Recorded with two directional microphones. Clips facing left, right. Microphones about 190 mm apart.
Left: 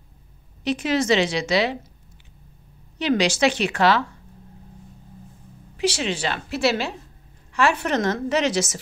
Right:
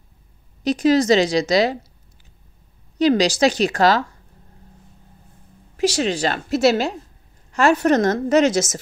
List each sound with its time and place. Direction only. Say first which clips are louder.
0.7 s a woman's voice: right 5 dB; 40° right (ahead or behind)
3.0 s a woman's voice: right 4 dB; 40° right (ahead or behind)
5.8 s a woman's voice: right 4 dB; 40° right (ahead or behind)